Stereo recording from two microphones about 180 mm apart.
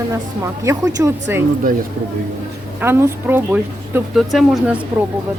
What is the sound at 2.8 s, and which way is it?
Speech, 15° right (ahead or behind).